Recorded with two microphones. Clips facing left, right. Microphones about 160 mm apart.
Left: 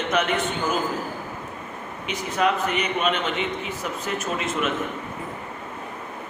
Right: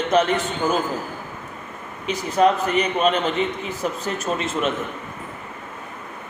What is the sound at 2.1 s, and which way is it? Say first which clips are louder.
A man's voice: right 5 dB; 35° right (ahead or behind).